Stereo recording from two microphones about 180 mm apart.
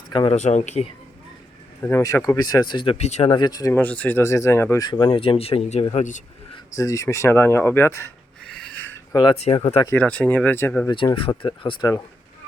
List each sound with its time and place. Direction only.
0.1 s speech: 25° left (ahead or behind)
0.3 s speech: 40° left (ahead or behind)
1.8 s speech: 15° left (ahead or behind); by 3.3 s 40° left (ahead or behind)
3.3 s speech: 20° left (ahead or behind)
3.8 s speech: 5° left (ahead or behind)
4.9 s speech: 25° left (ahead or behind); by 6.2 s 45° left (ahead or behind)
6.7 s speech: 20° left (ahead or behind)
9.1 s speech: 30° left (ahead or behind)
9.7 s speech: 20° left (ahead or behind)
10.0 s speech: 10° left (ahead or behind)
10.8 s speech: 25° left (ahead or behind)